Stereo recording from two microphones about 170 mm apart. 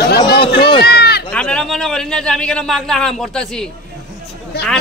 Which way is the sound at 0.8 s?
75° left (ahead or behind).